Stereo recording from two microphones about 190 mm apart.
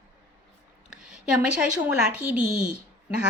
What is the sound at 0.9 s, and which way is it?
A woman's voice, 5° right (ahead or behind).